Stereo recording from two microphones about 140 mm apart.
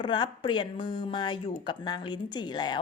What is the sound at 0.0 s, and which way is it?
A woman's voice, 35° left (ahead or behind).